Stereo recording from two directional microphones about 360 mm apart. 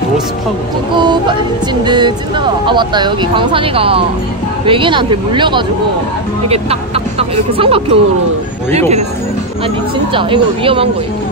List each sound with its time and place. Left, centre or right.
0.9 s speech: centre
10.1 s speech: centre